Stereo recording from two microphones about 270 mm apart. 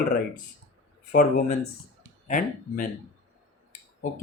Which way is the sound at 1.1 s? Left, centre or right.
Left.